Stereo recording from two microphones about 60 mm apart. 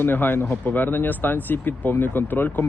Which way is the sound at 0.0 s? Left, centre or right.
Left.